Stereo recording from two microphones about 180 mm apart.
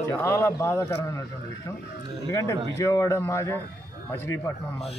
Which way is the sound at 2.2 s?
15° left (ahead or behind).